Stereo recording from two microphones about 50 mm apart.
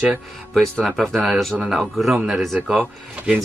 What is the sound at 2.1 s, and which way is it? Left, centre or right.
Speech, centre.